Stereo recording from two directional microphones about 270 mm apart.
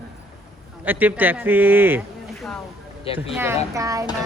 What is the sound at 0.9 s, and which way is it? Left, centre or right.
Speech, centre.